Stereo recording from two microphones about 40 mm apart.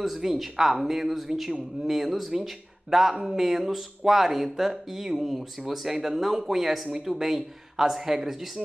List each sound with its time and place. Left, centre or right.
0.0 s speech: centre